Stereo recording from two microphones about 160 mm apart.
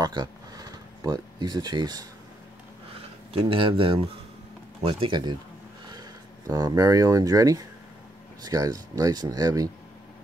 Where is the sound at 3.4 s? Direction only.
35° right (ahead or behind).